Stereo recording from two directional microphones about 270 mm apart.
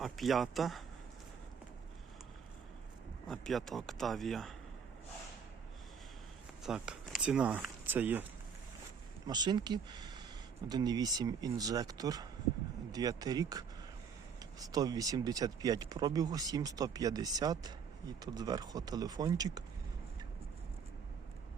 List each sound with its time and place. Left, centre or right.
0.0 s a man's voice: centre
3.2 s a man's voice: centre
6.6 s speech: centre
9.2 s speech: centre